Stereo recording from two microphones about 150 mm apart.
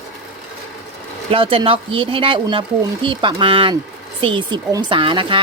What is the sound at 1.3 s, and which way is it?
Speech, 35° right (ahead or behind).